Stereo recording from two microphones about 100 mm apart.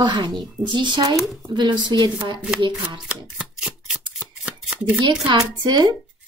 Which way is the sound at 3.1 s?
10° right (ahead or behind).